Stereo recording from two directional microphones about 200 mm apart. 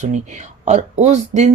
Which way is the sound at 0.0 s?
35° right (ahead or behind).